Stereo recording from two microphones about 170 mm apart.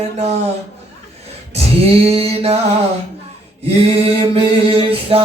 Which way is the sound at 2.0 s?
35° right (ahead or behind).